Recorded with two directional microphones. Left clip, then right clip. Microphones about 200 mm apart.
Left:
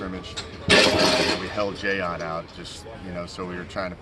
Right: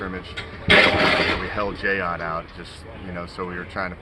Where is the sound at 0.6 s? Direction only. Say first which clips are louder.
Right 3 dB; 20° left (ahead or behind).